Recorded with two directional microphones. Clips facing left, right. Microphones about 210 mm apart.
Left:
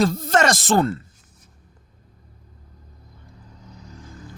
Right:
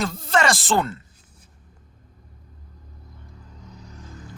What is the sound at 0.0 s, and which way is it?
Speech, 40° left (ahead or behind).